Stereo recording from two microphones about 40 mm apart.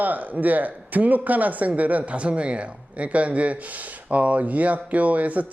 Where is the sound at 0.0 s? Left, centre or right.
Right.